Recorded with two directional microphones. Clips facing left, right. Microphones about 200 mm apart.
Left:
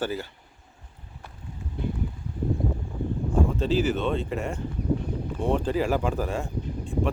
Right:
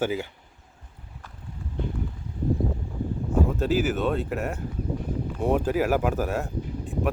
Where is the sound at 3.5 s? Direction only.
5° right (ahead or behind).